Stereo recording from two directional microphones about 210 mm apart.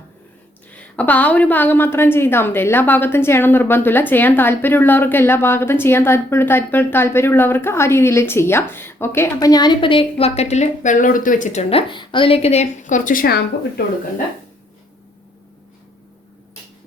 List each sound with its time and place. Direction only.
0.7 s a woman's voice: 5° left (ahead or behind); by 13.4 s 45° left (ahead or behind)